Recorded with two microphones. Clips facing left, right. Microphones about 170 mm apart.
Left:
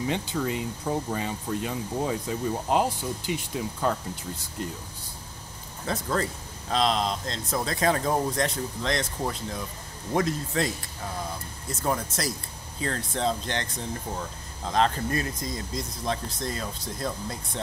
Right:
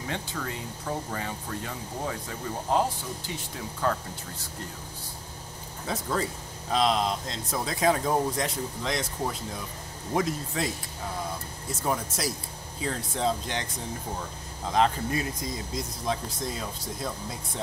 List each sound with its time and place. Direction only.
0.1 s speech: 20° left (ahead or behind)
5.9 s speech: 10° right (ahead or behind)
11.8 s speech: 5° right (ahead or behind)
14.7 s speech: 10° right (ahead or behind)